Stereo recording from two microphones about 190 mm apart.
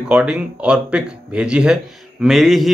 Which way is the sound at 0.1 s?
5° right (ahead or behind).